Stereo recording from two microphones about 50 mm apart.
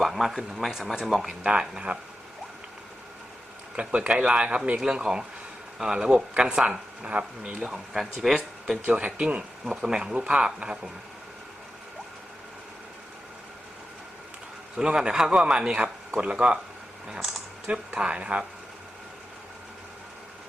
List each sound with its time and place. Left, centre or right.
0.0 s speech: centre
1.5 s speech: right
3.8 s speech: centre
4.8 s speech: centre
7.9 s speech: centre
9.0 s speech: right
9.6 s speech: centre
14.8 s speech: centre
17.7 s speech: right